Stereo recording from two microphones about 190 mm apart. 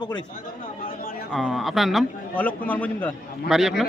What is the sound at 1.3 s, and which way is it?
A man's voice, centre (ahead or behind).